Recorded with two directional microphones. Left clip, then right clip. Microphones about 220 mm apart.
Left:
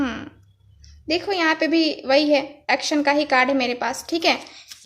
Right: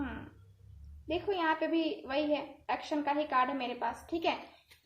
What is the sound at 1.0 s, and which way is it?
A woman's voice, 50° left (ahead or behind).